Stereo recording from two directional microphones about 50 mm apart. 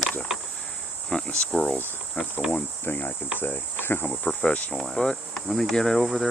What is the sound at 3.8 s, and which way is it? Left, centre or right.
Cricket, left.